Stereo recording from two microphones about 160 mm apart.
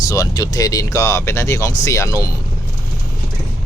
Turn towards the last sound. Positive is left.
turn(degrees=20)  # may be behind; listen again after turning